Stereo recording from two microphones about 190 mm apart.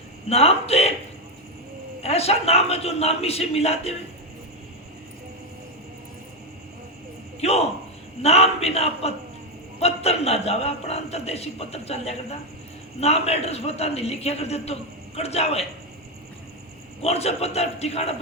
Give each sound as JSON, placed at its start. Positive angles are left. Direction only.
{"t": 0.3, "sound": "a man's voice", "side_deg": 30}
{"t": 2.0, "sound": "a man's voice", "side_deg": 30}
{"t": 7.4, "sound": "a man's voice", "side_deg": 35}
{"t": 17.0, "sound": "a man's voice", "side_deg": 35}